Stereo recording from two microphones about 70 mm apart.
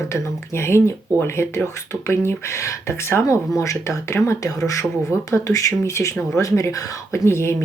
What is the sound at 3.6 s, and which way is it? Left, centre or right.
Speech, left.